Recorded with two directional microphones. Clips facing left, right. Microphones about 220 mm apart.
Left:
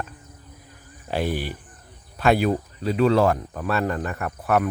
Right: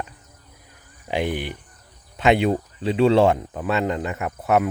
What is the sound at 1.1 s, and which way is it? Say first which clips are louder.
Speech: right 1 dB; 15° right (ahead or behind).